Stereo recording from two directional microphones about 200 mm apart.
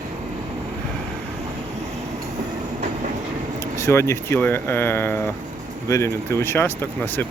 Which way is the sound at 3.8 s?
15° left (ahead or behind).